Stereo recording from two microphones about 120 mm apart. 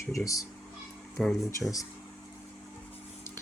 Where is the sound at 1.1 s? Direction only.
Centre (ahead or behind).